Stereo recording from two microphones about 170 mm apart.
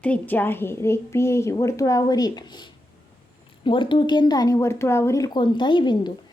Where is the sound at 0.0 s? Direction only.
10° left (ahead or behind).